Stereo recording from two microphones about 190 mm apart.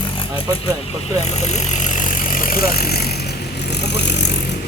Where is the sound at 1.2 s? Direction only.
35° left (ahead or behind).